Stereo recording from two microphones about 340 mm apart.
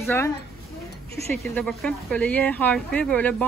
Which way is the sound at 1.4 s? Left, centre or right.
Centre.